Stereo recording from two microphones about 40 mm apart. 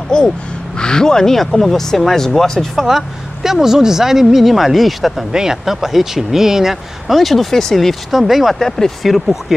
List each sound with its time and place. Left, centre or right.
0.1 s speech: centre
2.7 s speech: centre
5.3 s speech: centre
8.1 s speech: centre
8.5 s speech: centre
9.0 s speech: centre